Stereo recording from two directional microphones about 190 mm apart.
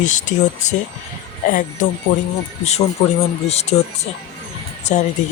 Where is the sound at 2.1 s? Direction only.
45° left (ahead or behind).